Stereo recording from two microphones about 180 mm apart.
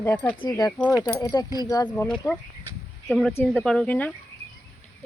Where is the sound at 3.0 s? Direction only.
10° left (ahead or behind).